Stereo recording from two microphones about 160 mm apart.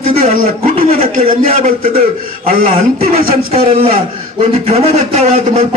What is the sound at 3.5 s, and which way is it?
A man's voice, 35° right (ahead or behind).